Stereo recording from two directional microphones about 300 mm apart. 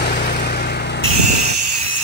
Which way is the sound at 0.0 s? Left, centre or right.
Left.